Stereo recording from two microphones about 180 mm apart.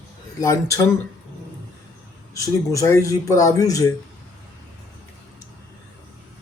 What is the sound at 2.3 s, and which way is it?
Speech, 20° left (ahead or behind).